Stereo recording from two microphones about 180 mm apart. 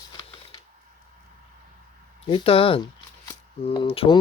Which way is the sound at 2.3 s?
30° left (ahead or behind).